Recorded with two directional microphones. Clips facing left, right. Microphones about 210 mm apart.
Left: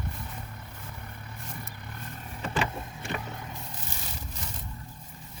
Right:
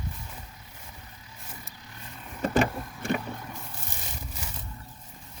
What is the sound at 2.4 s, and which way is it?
Vehicle, 45° right (ahead or behind).